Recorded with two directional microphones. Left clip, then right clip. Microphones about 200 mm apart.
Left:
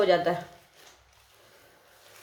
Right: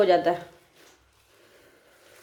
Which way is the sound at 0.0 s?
40° right (ahead or behind).